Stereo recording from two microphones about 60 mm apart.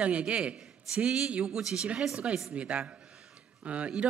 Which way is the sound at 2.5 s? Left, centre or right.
Right.